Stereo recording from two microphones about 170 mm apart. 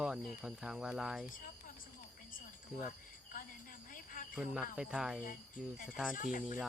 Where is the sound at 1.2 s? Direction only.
50° left (ahead or behind).